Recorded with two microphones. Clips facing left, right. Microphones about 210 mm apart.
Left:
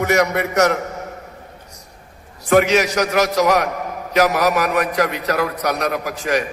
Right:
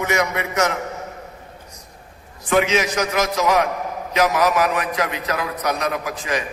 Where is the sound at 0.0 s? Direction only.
40° left (ahead or behind).